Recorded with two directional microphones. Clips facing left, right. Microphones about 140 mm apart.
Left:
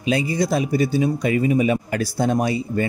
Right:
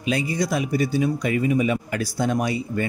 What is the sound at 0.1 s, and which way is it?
A man's voice, 30° left (ahead or behind).